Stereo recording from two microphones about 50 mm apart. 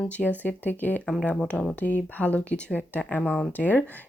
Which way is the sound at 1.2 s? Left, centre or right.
Left.